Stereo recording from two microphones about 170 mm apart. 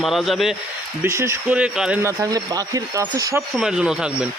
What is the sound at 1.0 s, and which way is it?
Speech, 15° right (ahead or behind).